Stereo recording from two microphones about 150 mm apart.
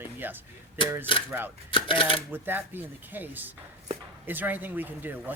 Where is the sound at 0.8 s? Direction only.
35° left (ahead or behind).